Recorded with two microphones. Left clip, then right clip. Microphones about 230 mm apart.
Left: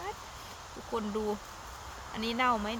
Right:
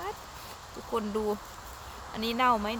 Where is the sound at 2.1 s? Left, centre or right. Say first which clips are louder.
Right 3 dB; centre.